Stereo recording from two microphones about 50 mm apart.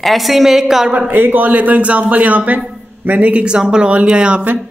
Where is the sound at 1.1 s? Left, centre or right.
Right.